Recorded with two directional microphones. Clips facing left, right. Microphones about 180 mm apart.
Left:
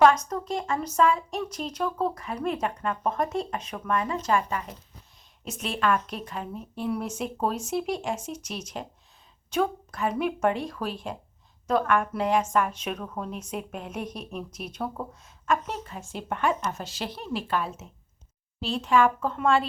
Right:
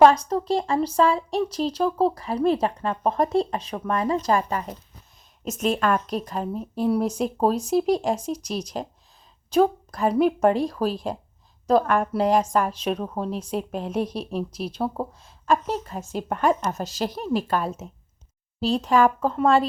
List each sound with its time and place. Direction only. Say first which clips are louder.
0.0 s speech: right 4 dB; 30° right (ahead or behind)